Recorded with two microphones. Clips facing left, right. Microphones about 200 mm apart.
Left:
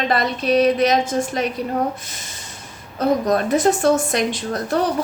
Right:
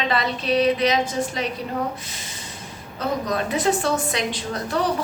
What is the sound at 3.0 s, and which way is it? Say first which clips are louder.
A woman's voice: left 6 dB; 50° left (ahead or behind).